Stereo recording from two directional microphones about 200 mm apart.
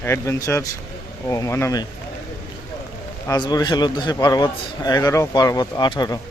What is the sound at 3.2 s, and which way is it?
A man's voice, 20° left (ahead or behind).